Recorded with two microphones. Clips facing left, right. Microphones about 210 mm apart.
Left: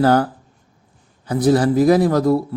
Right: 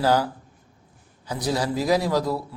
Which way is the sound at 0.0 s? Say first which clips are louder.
Left 6 dB; 55° left (ahead or behind).